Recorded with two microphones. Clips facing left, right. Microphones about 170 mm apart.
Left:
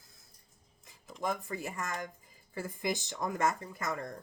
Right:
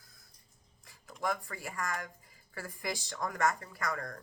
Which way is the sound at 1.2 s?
20° left (ahead or behind).